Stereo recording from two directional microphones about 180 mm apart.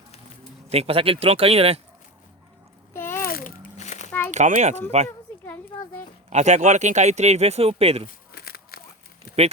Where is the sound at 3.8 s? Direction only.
40° left (ahead or behind).